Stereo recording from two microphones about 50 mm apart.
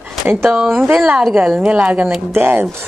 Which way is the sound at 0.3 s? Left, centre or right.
Right.